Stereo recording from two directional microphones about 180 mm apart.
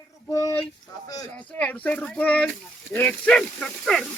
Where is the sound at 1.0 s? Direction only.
20° left (ahead or behind).